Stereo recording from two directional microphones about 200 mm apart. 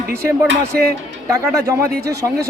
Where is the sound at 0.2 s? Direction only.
15° right (ahead or behind).